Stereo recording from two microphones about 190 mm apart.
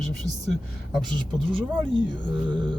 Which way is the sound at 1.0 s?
25° right (ahead or behind).